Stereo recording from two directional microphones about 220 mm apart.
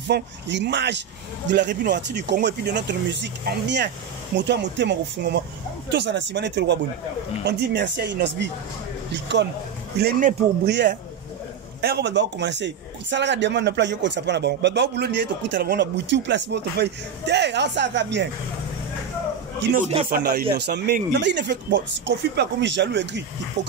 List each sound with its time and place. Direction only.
0.1 s a man's voice: 50° right (ahead or behind)
20.1 s a man's voice: 45° right (ahead or behind)